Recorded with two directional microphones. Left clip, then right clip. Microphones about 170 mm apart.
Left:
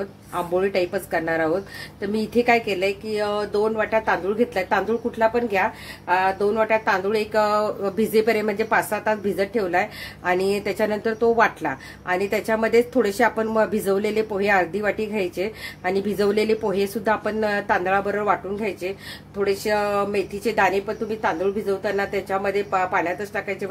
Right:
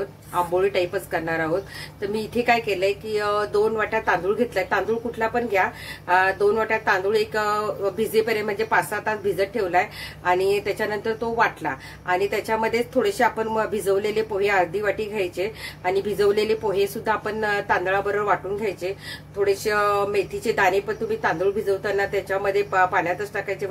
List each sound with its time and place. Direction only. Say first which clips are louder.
0.3 s a woman's voice: right 1 dB; 30° left (ahead or behind)